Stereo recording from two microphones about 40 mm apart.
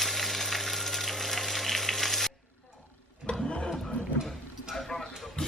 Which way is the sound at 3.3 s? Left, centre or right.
Left.